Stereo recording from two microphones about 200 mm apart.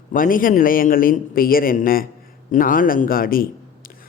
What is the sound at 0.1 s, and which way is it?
A man's voice, 45° left (ahead or behind).